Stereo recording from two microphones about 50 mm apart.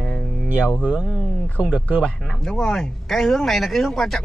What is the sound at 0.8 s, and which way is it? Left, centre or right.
Speech, right.